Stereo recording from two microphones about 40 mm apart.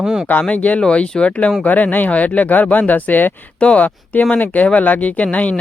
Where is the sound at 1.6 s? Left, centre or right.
Left.